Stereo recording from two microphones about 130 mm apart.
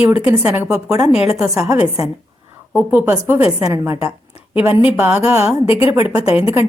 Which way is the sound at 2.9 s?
15° right (ahead or behind).